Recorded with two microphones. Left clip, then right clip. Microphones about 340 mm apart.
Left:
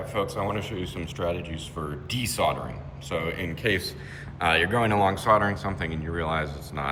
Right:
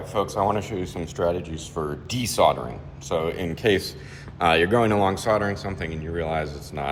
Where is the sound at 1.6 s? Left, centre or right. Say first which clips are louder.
Right 5 dB; centre.